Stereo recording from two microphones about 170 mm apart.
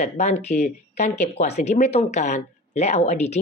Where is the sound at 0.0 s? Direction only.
40° left (ahead or behind).